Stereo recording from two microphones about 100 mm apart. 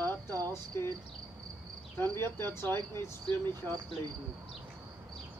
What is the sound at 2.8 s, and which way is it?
Speech, 45° right (ahead or behind).